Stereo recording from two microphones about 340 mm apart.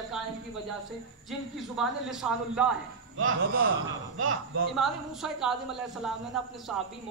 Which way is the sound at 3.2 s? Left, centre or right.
Right.